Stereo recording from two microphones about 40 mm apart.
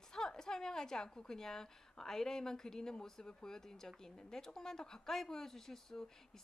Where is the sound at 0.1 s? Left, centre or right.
Centre.